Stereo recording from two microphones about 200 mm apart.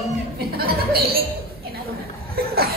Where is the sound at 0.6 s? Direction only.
50° right (ahead or behind).